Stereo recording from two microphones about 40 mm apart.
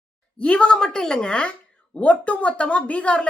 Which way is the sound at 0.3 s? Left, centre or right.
Left.